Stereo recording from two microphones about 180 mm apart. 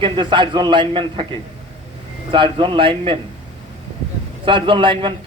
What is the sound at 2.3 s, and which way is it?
Speech, 30° right (ahead or behind).